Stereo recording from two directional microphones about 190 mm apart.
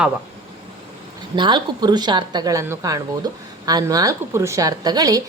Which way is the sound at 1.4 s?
25° right (ahead or behind).